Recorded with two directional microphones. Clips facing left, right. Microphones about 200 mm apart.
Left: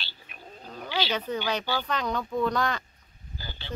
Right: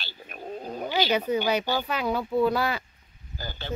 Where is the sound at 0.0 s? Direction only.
45° right (ahead or behind).